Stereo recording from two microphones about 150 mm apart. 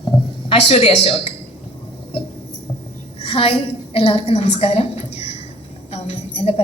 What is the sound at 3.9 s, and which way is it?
Speech, 40° left (ahead or behind).